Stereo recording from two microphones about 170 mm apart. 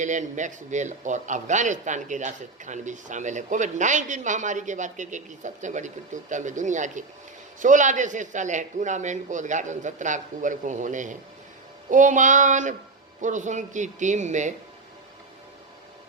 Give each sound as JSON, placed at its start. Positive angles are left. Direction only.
{"t": 0.0, "sound": "a man's voice", "side_deg": -45}